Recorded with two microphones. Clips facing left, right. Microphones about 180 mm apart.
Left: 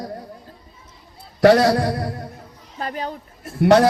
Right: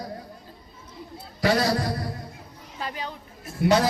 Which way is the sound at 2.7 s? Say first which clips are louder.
Left 6 dB; 45° left (ahead or behind).